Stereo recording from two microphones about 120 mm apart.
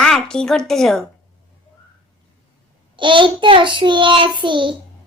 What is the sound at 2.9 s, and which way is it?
Child singing, 45° right (ahead or behind).